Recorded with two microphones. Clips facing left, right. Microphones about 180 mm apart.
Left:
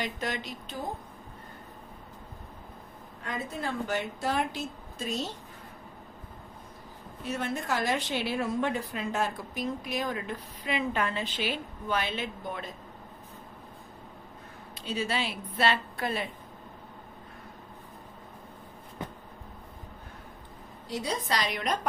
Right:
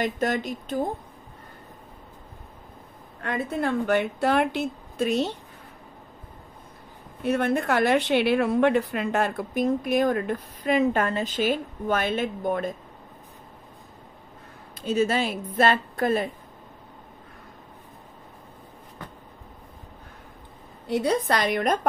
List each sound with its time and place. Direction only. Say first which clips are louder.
0.0 s a woman's voice: right 8 dB; 45° right (ahead or behind)
3.2 s speech: right 8 dB; 65° right (ahead or behind)
7.2 s a woman's voice: right 9 dB; 60° right (ahead or behind)
14.8 s a woman's voice: right 8 dB; 45° right (ahead or behind)
20.8 s speech: right 9 dB; 60° right (ahead or behind)